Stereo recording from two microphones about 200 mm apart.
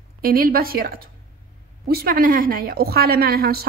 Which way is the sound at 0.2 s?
45° right (ahead or behind).